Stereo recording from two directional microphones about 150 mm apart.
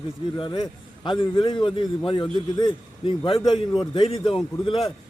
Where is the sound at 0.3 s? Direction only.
35° left (ahead or behind).